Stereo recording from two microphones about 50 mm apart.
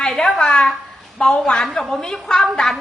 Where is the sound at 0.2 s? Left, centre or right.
Centre.